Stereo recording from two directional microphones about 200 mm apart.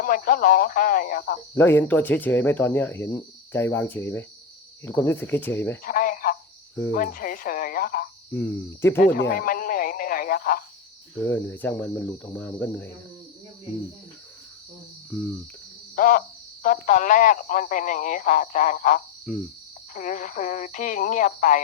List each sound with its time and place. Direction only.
0.0 s speech: 45° left (ahead or behind)
1.5 s speech: 10° left (ahead or behind)
5.8 s speech: 45° left (ahead or behind)
8.3 s speech: 10° left (ahead or behind)
9.3 s speech: 45° left (ahead or behind)
11.1 s speech: 10° left (ahead or behind)
16.0 s a sound: 40° left (ahead or behind)
16.6 s speech: 40° left (ahead or behind)
19.3 s cricket: centre (ahead or behind)
19.9 s speech: 40° left (ahead or behind)